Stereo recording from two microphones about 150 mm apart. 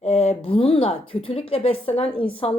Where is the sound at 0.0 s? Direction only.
45° left (ahead or behind).